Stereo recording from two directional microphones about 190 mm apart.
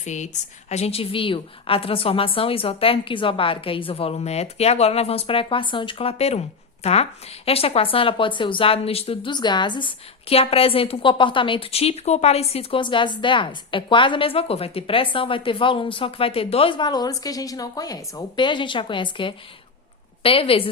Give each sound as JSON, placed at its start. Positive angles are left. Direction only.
{"t": 0.0, "sound": "speech", "side_deg": 40}